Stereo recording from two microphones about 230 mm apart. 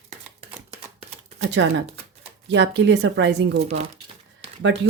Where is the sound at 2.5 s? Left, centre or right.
Right.